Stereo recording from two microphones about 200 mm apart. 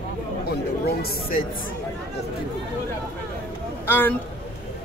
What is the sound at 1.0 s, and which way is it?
Speech, 45° left (ahead or behind).